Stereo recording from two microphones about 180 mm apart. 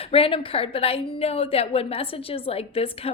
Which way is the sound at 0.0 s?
30° left (ahead or behind).